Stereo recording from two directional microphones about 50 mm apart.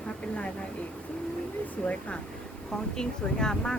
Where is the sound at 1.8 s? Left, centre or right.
Centre.